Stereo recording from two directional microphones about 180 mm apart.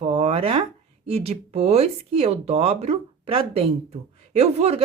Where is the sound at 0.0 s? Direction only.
35° right (ahead or behind).